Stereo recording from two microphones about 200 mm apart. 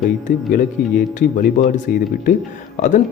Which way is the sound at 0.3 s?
45° left (ahead or behind).